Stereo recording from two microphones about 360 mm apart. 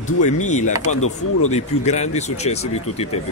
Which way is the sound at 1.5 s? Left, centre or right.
Centre.